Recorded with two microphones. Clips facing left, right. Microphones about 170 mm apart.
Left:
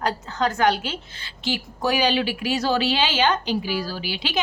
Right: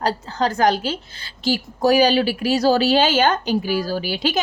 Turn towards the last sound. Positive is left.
turn(degrees=-45)  # may be behind; listen again after turning